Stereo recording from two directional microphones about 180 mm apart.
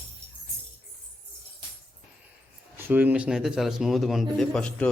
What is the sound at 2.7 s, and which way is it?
Speech, 10° right (ahead or behind).